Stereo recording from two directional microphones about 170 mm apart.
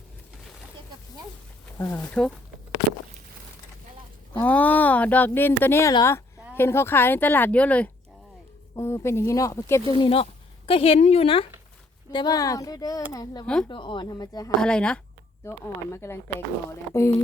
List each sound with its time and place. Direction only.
1.8 s speech: 15° left (ahead or behind)
4.4 s speech: 10° left (ahead or behind)
9.8 s a woman's voice: 25° left (ahead or behind)
12.1 s speech: 25° left (ahead or behind)
13.4 s speech: 5° left (ahead or behind)
13.7 s speech: 30° left (ahead or behind)
14.6 s speech: 5° left (ahead or behind)